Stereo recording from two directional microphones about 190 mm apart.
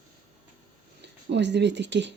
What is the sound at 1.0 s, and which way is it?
Speech, 65° right (ahead or behind).